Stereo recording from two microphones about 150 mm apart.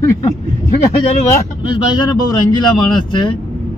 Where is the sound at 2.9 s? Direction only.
30° left (ahead or behind).